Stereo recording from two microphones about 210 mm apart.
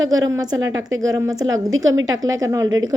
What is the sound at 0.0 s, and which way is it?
A woman's voice, 70° right (ahead or behind).